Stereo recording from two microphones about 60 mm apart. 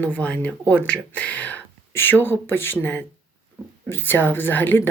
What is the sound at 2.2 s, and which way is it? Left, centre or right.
Speech, left.